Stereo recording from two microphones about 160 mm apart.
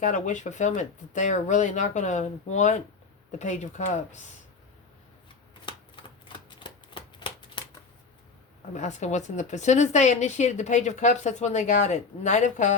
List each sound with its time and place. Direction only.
0.0 s speech: 50° left (ahead or behind)
5.6 s shuffling cards: 30° left (ahead or behind)
8.7 s speech: 50° left (ahead or behind)